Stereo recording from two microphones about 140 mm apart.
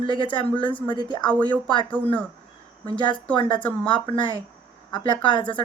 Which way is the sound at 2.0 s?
10° left (ahead or behind).